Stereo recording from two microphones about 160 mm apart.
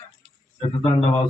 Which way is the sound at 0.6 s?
35° left (ahead or behind).